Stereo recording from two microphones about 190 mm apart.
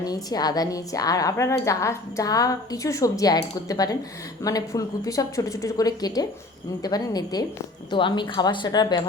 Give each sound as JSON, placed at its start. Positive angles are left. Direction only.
{"t": 0.0, "sound": "a woman's voice", "side_deg": 20}